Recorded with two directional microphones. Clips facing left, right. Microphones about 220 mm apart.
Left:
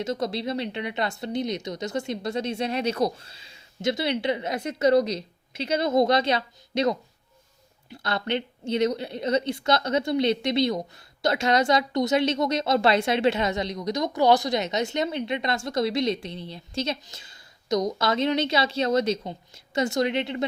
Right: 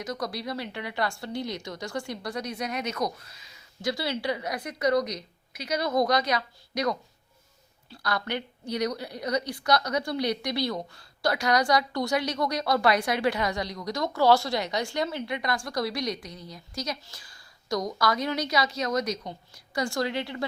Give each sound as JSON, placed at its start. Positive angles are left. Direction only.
{"t": 0.0, "sound": "a woman's voice", "side_deg": 25}